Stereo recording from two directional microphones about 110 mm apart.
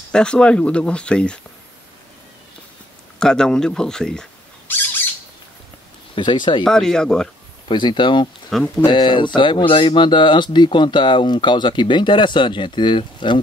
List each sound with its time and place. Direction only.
0.1 s speech: 10° left (ahead or behind)
3.2 s speech: 5° left (ahead or behind)
4.7 s speech: 15° left (ahead or behind)
6.1 s speech: 45° left (ahead or behind)
6.6 s speech: 5° left (ahead or behind)
7.6 s speech: 45° left (ahead or behind)
8.5 s speech: centre (ahead or behind)
8.8 s speech: 45° left (ahead or behind)